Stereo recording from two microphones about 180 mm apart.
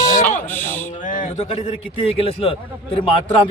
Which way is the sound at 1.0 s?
45° left (ahead or behind).